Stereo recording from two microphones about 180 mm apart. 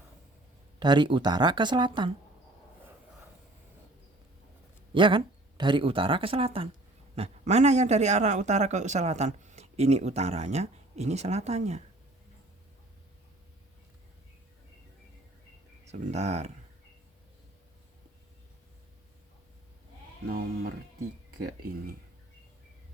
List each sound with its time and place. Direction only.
0.8 s speech: 25° right (ahead or behind)
4.9 s speech: 25° right (ahead or behind)
15.9 s speech: 40° right (ahead or behind)
20.2 s speech: 60° right (ahead or behind)